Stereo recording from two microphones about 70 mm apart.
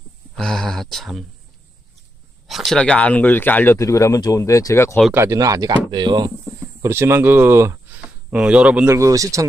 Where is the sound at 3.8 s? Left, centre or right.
Left.